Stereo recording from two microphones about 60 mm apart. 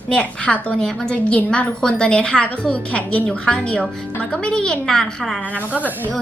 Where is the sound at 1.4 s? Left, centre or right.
Centre.